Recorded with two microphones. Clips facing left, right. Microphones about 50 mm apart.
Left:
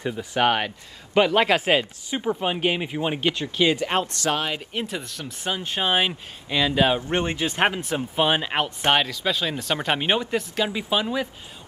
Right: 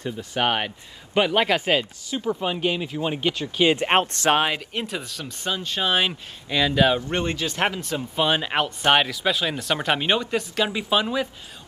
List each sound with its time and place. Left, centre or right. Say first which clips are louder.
0.2 s speech: left 2 dB; centre
2.0 s speech: left 1 dB; left
3.6 s speech: right 3 dB; right
4.7 s speech: even; centre
5.5 s speech: even; left
5.9 s speech: even; centre
8.5 s speech: right 1 dB; centre
8.8 s speech: right 2 dB; centre
9.1 s speech: right 1 dB; centre
9.9 s speech: even; centre
10.3 s speech: right 1 dB; centre